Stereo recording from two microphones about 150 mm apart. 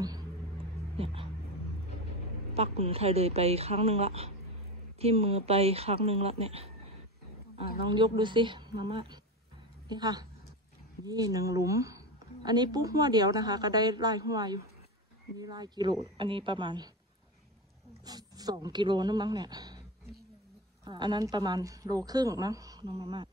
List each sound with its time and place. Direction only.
0.9 s a sound: 40° right (ahead or behind)
2.5 s a woman's voice: 40° right (ahead or behind)
18.0 s a woman's voice: 25° right (ahead or behind)
20.8 s a woman's voice: 30° right (ahead or behind)